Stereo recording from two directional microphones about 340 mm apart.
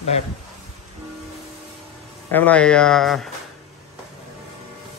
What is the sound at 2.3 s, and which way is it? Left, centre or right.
A man's voice, centre.